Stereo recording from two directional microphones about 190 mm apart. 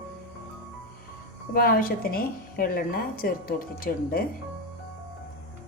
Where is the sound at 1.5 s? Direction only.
50° left (ahead or behind).